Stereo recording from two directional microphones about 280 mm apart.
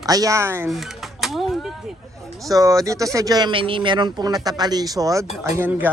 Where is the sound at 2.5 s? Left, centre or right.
Centre.